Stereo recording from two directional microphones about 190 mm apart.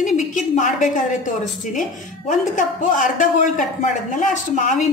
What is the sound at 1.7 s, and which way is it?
A woman's voice, 45° left (ahead or behind).